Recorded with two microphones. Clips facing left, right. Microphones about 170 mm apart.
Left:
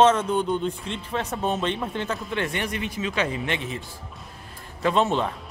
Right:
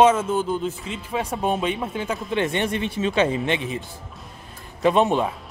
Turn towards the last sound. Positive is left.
turn(degrees=-10)  # may be behind; listen again after turning